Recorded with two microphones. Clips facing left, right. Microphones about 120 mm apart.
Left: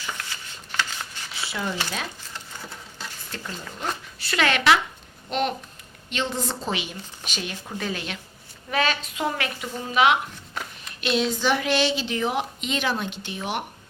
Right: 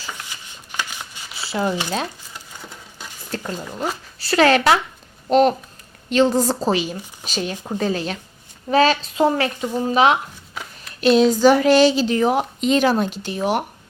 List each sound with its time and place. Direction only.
0.2 s shuffling cards: 15° right (ahead or behind)
1.5 s speech: 35° right (ahead or behind)
3.3 s a woman's voice: 40° right (ahead or behind)
6.9 s speech: 15° right (ahead or behind)
7.3 s a woman's voice: 35° right (ahead or behind)
10.5 s a sound: centre (ahead or behind)
11.0 s a woman's voice: 40° right (ahead or behind)